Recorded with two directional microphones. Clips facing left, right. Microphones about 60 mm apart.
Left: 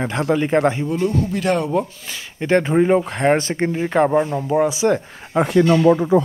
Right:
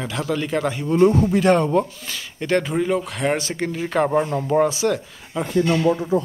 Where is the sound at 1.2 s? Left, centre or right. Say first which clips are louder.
Right 3 dB; centre.